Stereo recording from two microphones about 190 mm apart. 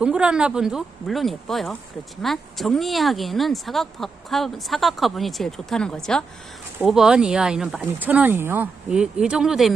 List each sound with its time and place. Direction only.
0.0 s speech: 5° right (ahead or behind)